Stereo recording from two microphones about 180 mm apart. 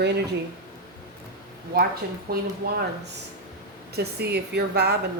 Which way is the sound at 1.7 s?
60° right (ahead or behind).